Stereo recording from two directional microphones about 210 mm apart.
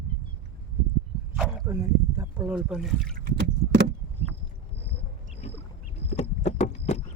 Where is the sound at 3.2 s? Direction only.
50° right (ahead or behind).